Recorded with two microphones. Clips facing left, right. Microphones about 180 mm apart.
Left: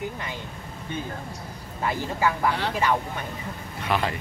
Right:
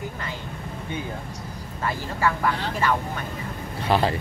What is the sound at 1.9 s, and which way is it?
Speech, 15° left (ahead or behind).